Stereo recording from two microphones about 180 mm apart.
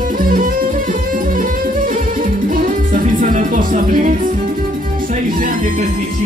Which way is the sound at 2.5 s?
45° right (ahead or behind).